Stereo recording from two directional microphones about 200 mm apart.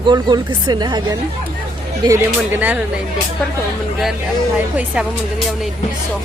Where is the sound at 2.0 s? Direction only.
10° right (ahead or behind).